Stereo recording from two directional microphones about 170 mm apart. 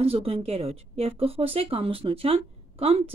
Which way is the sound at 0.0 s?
35° right (ahead or behind).